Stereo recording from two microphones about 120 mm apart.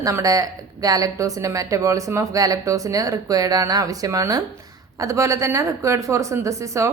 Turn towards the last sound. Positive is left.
turn(degrees=-25)  # may be behind; listen again after turning